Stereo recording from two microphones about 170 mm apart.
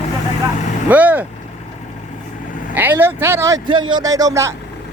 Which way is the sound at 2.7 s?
10° right (ahead or behind).